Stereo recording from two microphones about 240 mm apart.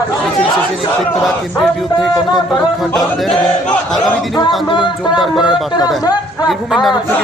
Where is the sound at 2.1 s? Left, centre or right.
Centre.